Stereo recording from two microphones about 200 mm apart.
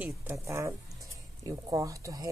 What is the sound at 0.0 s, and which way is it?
A woman's voice, 10° right (ahead or behind).